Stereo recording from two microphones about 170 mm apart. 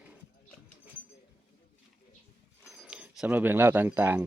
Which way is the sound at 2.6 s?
5° right (ahead or behind).